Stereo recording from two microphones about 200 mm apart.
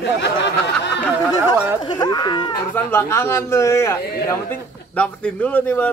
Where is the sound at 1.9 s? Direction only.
20° left (ahead or behind).